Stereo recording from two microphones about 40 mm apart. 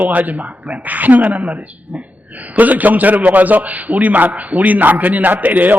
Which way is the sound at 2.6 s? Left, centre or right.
Right.